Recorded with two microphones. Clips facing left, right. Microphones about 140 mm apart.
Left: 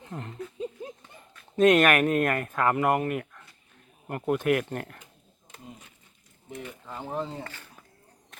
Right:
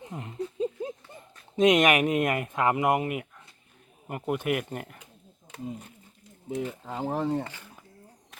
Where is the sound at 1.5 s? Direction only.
15° right (ahead or behind).